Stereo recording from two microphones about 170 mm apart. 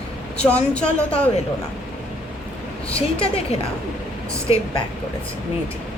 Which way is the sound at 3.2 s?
35° left (ahead or behind).